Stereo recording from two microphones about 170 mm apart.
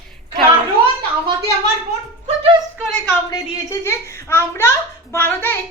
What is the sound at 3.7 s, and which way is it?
A child's voice, 15° left (ahead or behind).